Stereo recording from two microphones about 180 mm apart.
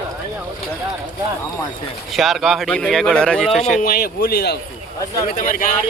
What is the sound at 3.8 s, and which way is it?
Speech, 60° left (ahead or behind).